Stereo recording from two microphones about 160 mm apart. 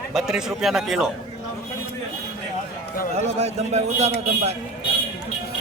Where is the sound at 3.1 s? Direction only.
45° right (ahead or behind).